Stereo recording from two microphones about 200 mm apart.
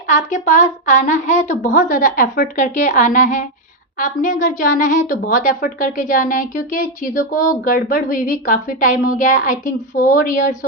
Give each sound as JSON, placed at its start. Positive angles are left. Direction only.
{"t": 0.1, "sound": "a woman's voice", "side_deg": 40}